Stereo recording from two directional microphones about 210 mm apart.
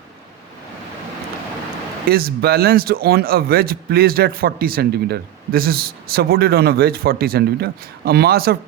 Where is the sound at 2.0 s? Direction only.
45° right (ahead or behind).